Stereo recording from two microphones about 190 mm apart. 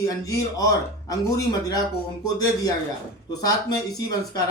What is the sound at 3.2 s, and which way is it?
Speech, 20° left (ahead or behind).